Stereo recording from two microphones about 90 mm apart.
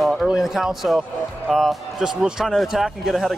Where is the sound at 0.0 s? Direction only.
Centre (ahead or behind).